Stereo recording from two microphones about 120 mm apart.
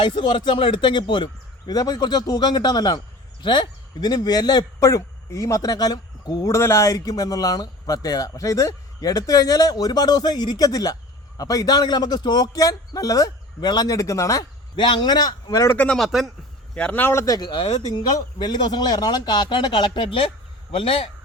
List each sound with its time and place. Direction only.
0.0 s a man's voice: 40° left (ahead or behind); by 14.4 s 25° left (ahead or behind)
14.8 s a man's voice: 40° left (ahead or behind)
15.7 s speech: 10° left (ahead or behind)
16.0 s speech: centre (ahead or behind)
16.7 s a man's voice: 10° left (ahead or behind); by 21.1 s 50° left (ahead or behind)